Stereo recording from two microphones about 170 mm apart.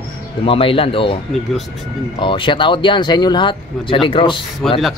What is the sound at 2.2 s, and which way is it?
Speech, 30° left (ahead or behind).